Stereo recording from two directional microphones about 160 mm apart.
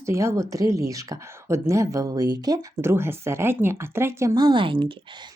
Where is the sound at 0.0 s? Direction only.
20° right (ahead or behind).